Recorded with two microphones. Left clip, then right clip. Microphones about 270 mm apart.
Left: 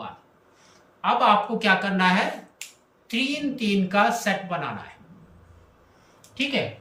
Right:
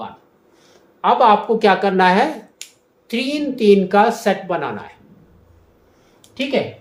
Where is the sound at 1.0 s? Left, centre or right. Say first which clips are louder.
Right 7 dB; centre.